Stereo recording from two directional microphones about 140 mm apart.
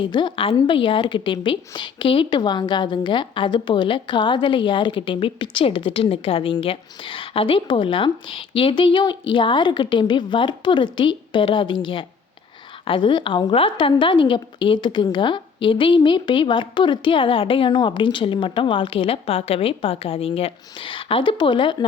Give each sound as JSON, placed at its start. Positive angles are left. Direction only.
{"t": 0.1, "sound": "a woman's voice", "side_deg": 35}